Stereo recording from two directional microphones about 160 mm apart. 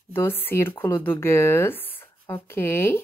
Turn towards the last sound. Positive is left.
turn(degrees=15)  # may be behind; listen again after turning